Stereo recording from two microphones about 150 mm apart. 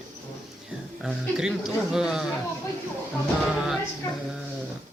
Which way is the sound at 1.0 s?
5° right (ahead or behind).